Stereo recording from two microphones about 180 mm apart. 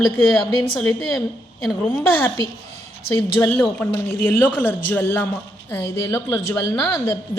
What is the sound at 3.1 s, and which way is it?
A woman's voice, 10° left (ahead or behind).